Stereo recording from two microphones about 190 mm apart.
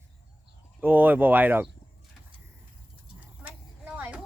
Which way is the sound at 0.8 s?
10° right (ahead or behind).